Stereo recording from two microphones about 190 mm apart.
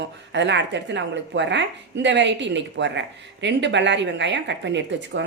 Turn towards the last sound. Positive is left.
turn(degrees=-70)  # may be behind; listen again after turning